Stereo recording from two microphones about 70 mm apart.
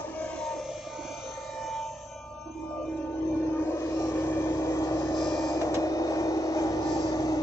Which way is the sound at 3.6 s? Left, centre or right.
Left.